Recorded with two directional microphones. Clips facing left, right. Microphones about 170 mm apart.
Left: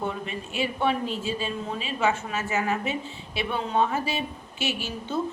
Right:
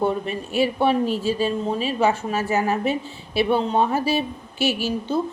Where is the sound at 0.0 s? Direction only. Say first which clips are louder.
Right 8 dB; 35° right (ahead or behind).